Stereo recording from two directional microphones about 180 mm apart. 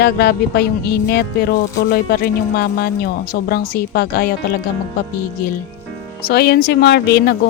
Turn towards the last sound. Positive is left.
turn(degrees=65)  # may be behind; listen again after turning